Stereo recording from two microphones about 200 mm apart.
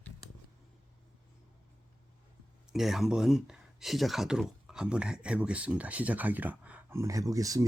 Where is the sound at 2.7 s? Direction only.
Centre (ahead or behind).